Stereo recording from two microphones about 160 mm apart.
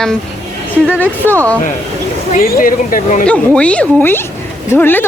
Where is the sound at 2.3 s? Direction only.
65° left (ahead or behind).